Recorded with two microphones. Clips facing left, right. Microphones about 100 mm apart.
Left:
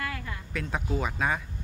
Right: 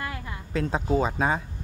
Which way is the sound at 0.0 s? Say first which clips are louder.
Right 1 dB; 20° right (ahead or behind).